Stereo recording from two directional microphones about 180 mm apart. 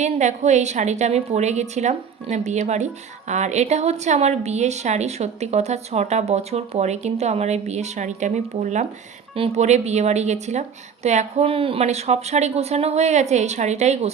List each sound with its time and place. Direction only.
0.0 s a woman's voice: 40° right (ahead or behind)
9.3 s a woman's voice: 35° right (ahead or behind)